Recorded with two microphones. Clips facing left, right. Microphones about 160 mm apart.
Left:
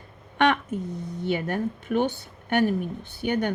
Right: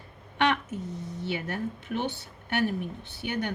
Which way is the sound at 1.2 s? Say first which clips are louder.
Left 6 dB; 50° left (ahead or behind).